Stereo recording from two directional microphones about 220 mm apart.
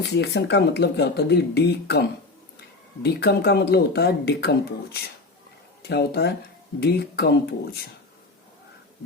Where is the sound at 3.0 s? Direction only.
50° left (ahead or behind).